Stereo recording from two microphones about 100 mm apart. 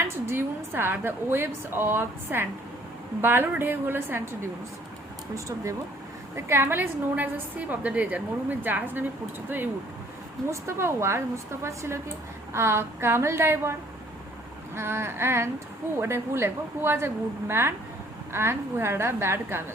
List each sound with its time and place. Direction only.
0.0 s a woman's voice: 25° right (ahead or behind)
10.5 s a woman's voice: 25° right (ahead or behind)
14.8 s a woman's voice: 25° right (ahead or behind)